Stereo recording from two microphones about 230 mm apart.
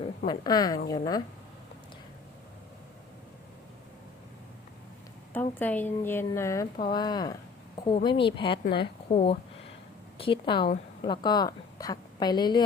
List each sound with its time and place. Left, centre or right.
0.3 s a woman's voice: centre
5.3 s a woman's voice: centre